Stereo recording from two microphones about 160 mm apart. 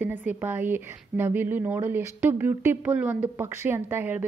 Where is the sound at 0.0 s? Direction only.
10° right (ahead or behind).